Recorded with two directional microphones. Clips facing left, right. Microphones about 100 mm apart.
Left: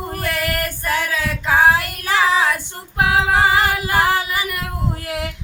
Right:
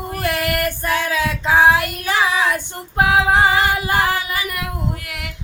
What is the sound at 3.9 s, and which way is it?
Child singing, 30° left (ahead or behind).